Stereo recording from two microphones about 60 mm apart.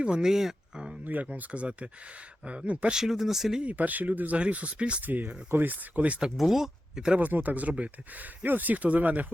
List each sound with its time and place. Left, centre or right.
0.0 s a sound: centre
1.0 s speech: right
2.9 s speech: centre
3.6 s speech: right
5.0 s speech: right
6.0 s speech: centre
6.3 s speech: centre
7.2 s speech: right